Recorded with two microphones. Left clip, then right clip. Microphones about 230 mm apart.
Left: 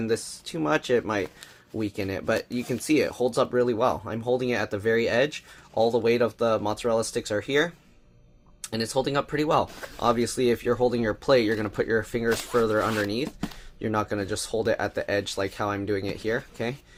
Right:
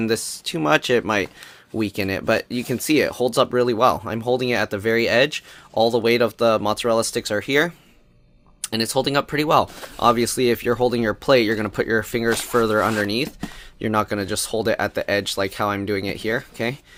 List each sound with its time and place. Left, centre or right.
0.0 s speech: right